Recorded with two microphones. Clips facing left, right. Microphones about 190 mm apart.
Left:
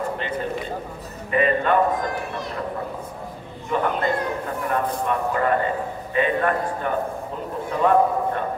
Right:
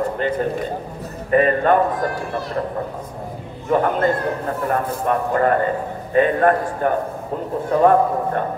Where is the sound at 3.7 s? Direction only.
45° right (ahead or behind).